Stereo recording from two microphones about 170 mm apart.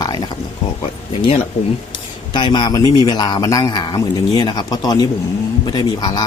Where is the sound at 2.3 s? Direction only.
25° left (ahead or behind).